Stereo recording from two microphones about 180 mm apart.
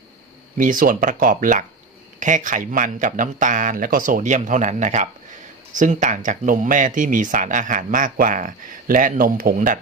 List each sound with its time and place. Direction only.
0.5 s speech: 50° right (ahead or behind)